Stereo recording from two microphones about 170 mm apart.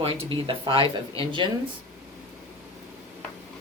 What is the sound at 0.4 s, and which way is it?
Speech, 30° right (ahead or behind).